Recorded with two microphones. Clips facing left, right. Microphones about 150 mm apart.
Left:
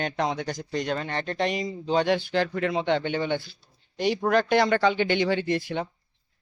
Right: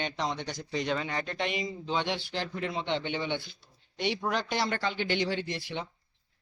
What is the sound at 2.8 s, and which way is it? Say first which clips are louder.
Speech: left 5 dB; 50° left (ahead or behind).